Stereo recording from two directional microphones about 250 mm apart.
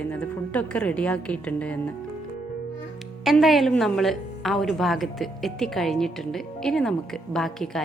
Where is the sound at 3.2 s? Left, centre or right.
Centre.